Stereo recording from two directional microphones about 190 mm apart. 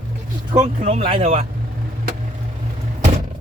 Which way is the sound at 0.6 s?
40° right (ahead or behind).